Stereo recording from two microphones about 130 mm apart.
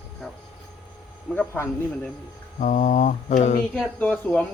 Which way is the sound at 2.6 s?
75° left (ahead or behind).